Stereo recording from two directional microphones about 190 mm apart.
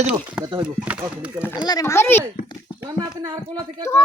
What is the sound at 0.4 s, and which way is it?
Speech, 25° right (ahead or behind).